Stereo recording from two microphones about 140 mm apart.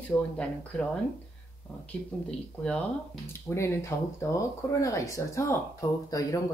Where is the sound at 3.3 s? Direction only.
20° left (ahead or behind).